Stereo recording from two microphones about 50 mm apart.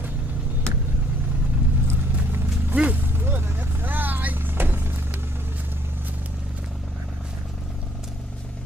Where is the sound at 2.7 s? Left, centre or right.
Right.